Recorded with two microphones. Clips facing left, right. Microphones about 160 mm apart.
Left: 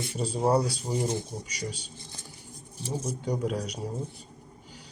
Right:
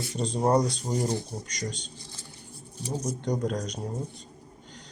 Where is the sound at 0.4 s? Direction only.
10° left (ahead or behind).